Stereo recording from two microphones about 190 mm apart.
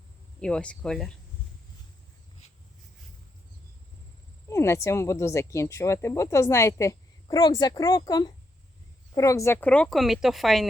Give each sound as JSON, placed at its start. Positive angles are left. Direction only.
{"t": 0.3, "sound": "speech", "side_deg": 5}
{"t": 4.4, "sound": "speech", "side_deg": 15}